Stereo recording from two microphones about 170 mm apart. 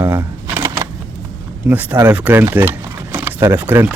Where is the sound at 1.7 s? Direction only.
10° right (ahead or behind).